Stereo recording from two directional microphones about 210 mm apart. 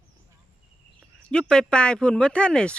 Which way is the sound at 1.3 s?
5° left (ahead or behind).